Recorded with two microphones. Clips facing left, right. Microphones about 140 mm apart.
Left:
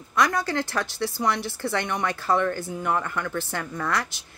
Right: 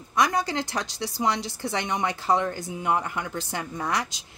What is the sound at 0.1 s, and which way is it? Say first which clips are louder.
Speech: left 1 dB; 20° right (ahead or behind).